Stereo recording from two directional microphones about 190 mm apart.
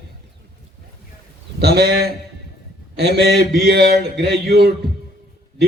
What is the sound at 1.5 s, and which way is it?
A man's voice, 60° right (ahead or behind).